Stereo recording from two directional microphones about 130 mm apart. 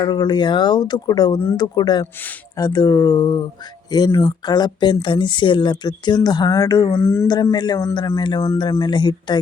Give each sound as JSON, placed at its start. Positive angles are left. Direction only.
{"t": 0.0, "sound": "speech", "side_deg": 35}
{"t": 7.5, "sound": "speech", "side_deg": 30}